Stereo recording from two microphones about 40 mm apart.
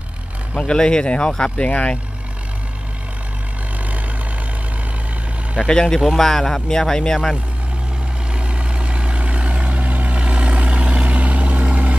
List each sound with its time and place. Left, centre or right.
0.6 s speech: left
5.7 s speech: centre
8.3 s vehicle: right